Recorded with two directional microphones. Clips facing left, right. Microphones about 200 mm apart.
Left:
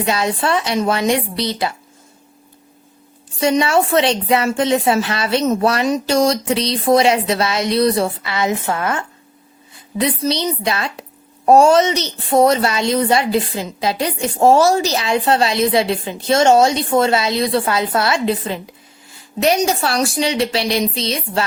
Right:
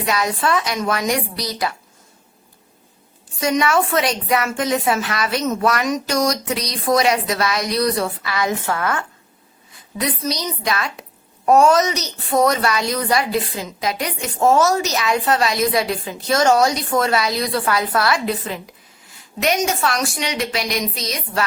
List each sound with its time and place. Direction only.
0.0 s a woman's voice: 30° left (ahead or behind)
3.4 s a woman's voice: 30° left (ahead or behind)